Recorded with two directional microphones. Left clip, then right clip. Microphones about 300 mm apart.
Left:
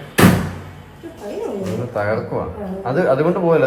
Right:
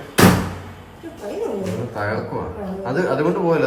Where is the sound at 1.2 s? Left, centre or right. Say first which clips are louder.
Even; centre.